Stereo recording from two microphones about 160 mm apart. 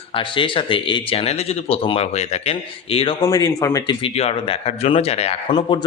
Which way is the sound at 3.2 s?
20° left (ahead or behind).